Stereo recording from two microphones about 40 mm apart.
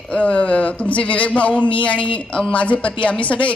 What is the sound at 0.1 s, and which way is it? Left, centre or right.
A woman's voice, left.